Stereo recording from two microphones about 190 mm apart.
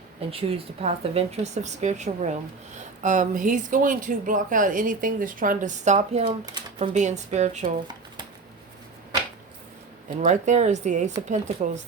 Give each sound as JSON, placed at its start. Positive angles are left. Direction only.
{"t": 0.3, "sound": "speech", "side_deg": -30}
{"t": 6.2, "sound": "speech", "side_deg": -20}
{"t": 6.7, "sound": "speech", "side_deg": -35}
{"t": 10.2, "sound": "speech", "side_deg": -40}